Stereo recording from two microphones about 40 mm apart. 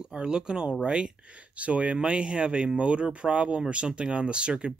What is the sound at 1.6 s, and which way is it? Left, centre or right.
Speech, right.